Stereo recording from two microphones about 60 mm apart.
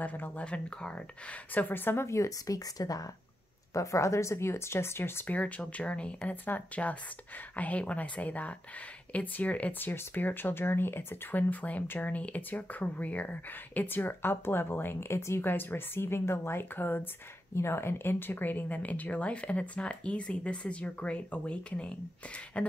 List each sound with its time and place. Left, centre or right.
0.0 s speech: left
2.0 s speech: left
3.7 s speech: left
5.3 s speech: left
11.5 s speech: left
15.4 s speech: left
17.6 s speech: left; by 22.7 s centre